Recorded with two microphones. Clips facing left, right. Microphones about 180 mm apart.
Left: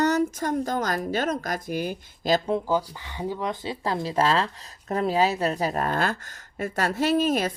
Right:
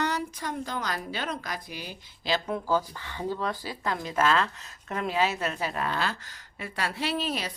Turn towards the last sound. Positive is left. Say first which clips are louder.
# left 8 dB
turn(degrees=45)  # may be behind; listen again after turning